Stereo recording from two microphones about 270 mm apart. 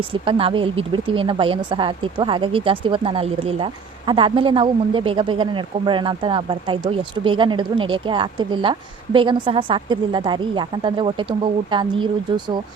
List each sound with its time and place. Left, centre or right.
0.0 s speech: centre